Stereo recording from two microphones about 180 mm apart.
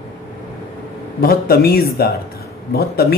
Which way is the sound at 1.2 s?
55° left (ahead or behind).